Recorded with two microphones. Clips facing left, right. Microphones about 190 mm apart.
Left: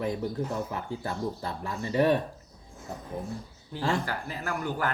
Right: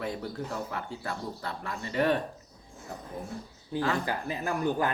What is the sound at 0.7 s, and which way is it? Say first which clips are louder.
Speech: left 2 dB; 20° left (ahead or behind).